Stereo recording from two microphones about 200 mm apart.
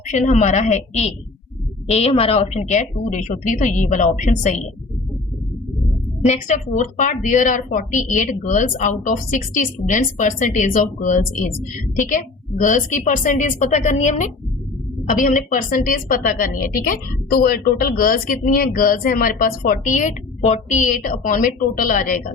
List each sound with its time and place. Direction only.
0.1 s a woman's voice: 40° left (ahead or behind)
6.2 s a woman's voice: 35° left (ahead or behind)